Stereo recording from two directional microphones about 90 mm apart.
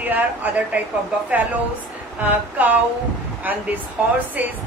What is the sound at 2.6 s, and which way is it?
A woman's voice, 20° right (ahead or behind).